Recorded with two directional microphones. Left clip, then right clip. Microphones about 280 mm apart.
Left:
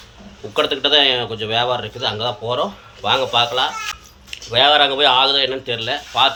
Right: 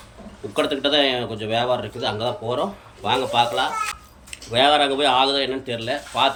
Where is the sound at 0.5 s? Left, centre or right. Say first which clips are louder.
Left 4 dB; centre.